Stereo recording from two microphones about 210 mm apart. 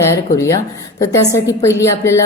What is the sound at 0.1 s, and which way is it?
A woman's voice, 15° left (ahead or behind).